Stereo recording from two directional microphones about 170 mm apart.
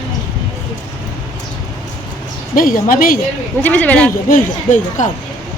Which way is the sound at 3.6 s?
10° left (ahead or behind).